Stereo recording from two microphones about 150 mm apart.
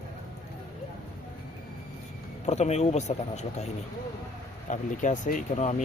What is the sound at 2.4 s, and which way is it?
Speech, 50° left (ahead or behind).